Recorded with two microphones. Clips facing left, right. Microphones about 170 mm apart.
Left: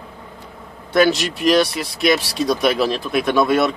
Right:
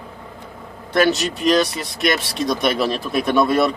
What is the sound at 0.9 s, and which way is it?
Speech, centre (ahead or behind).